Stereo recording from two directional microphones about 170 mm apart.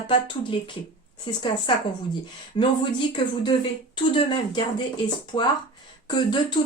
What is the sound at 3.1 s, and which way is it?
Speech, 25° left (ahead or behind).